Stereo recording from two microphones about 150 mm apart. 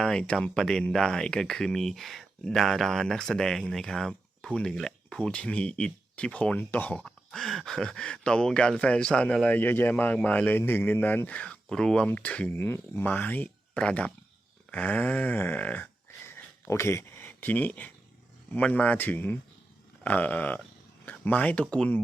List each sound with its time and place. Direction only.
0.0 s speech: 5° left (ahead or behind)
14.7 s a sound: 10° left (ahead or behind)
18.5 s speech: 10° left (ahead or behind)